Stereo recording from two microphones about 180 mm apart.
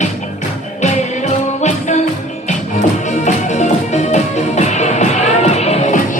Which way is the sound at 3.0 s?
40° left (ahead or behind).